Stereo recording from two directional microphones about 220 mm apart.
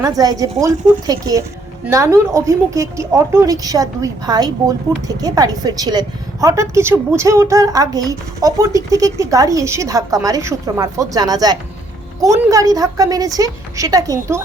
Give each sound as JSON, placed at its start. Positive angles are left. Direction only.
{"t": 0.2, "sound": "a woman's voice", "side_deg": -15}